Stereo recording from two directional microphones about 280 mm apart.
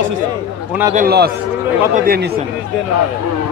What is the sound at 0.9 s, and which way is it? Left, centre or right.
A man's voice, right.